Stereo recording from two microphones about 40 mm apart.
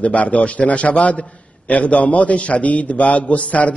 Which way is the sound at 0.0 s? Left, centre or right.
Left.